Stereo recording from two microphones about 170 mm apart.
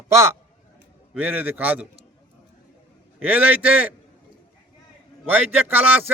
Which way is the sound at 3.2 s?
10° right (ahead or behind).